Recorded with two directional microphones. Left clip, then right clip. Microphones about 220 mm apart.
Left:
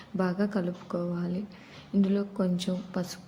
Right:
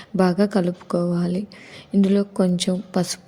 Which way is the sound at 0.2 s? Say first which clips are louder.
Right 10 dB; 40° right (ahead or behind).